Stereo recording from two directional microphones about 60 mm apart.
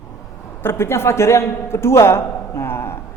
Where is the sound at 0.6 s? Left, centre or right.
Left.